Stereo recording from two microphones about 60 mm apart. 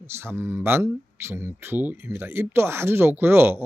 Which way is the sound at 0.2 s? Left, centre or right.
Right.